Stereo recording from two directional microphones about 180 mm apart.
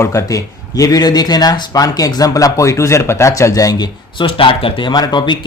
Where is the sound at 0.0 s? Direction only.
20° left (ahead or behind).